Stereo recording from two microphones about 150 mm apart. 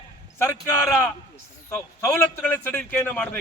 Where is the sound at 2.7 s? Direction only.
10° left (ahead or behind).